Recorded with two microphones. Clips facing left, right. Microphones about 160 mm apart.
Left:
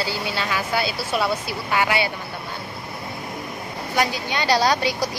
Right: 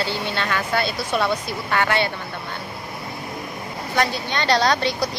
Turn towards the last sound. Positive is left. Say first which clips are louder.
# even
turn(degrees=10)  # may be behind; listen again after turning